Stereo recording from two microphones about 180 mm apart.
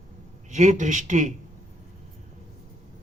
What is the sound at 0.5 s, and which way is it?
Speech, 40° right (ahead or behind).